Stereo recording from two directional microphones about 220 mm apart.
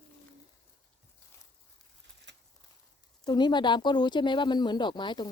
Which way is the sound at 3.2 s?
20° left (ahead or behind).